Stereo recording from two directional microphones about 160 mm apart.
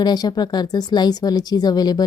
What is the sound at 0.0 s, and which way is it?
A woman's voice, 25° left (ahead or behind).